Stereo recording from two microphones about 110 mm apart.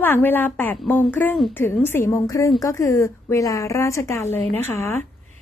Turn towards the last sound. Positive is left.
turn(degrees=20)  # may be behind; listen again after turning